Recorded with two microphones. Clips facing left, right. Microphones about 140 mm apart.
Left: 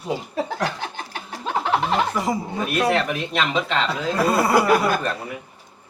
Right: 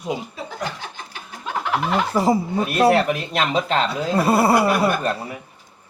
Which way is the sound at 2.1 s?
30° right (ahead or behind).